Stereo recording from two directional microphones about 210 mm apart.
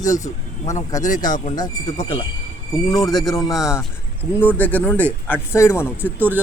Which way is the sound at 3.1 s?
Centre (ahead or behind).